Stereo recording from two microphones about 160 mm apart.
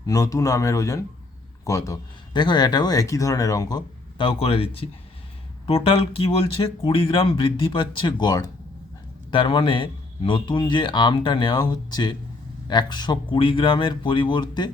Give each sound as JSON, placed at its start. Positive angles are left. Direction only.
{"t": 0.0, "sound": "speech", "side_deg": 20}